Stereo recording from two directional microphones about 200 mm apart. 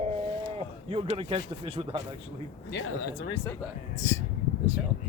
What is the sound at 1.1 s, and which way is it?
Speech, 30° right (ahead or behind).